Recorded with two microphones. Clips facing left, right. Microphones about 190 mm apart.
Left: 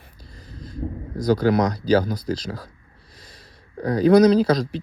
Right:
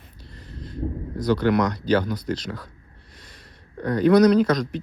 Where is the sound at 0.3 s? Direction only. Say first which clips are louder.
Even; 40° left (ahead or behind).